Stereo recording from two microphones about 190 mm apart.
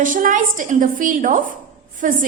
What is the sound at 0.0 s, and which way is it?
A woman's voice, 45° right (ahead or behind).